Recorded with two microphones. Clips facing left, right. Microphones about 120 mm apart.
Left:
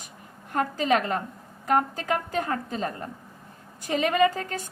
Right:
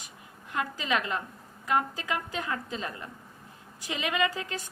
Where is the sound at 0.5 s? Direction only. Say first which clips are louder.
Left 6 dB; 45° left (ahead or behind).